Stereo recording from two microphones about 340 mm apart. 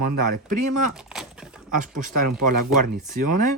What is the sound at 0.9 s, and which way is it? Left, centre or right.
Speech, centre.